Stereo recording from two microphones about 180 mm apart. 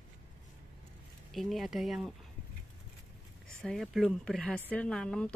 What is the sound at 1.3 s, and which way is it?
Speech, centre (ahead or behind).